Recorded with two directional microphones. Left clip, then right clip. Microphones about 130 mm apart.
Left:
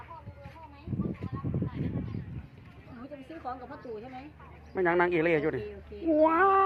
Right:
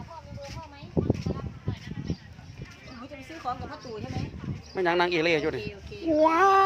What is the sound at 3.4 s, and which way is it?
Speech, 20° right (ahead or behind).